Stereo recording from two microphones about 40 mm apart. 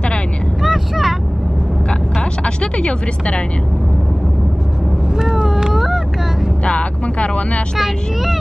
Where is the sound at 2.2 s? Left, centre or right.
Left.